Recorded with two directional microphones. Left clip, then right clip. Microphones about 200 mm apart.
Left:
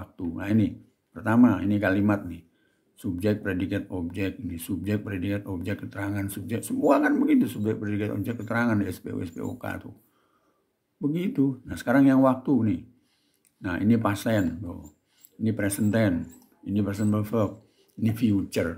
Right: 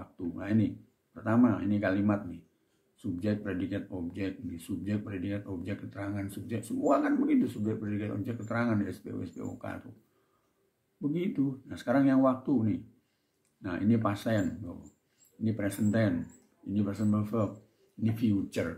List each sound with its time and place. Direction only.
0.1 s speech: 40° left (ahead or behind)
11.1 s speech: 40° left (ahead or behind)
15.4 s speech: 45° left (ahead or behind)